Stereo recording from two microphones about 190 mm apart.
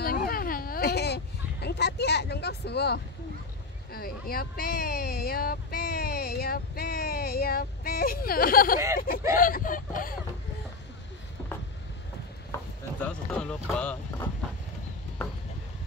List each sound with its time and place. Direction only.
0.0 s a sound: 50° left (ahead or behind)
3.9 s speech: 50° left (ahead or behind)
13.0 s vehicle: 5° left (ahead or behind)